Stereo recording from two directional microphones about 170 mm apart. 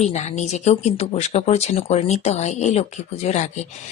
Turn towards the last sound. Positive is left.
turn(degrees=40)  # may be behind; listen again after turning